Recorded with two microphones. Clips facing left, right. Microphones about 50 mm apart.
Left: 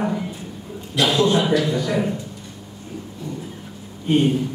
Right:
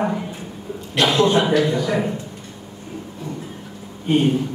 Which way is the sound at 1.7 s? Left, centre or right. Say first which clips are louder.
Right 1 dB; centre.